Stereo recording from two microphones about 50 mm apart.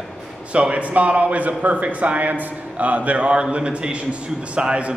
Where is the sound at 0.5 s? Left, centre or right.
Right.